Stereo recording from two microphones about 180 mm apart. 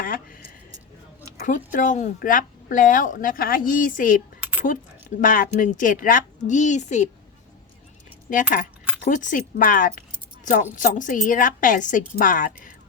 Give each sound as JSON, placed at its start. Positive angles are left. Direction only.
{"t": 0.0, "sound": "a sound", "side_deg": 50}
{"t": 1.5, "sound": "a woman's voice", "side_deg": 45}
{"t": 8.3, "sound": "a woman's voice", "side_deg": 50}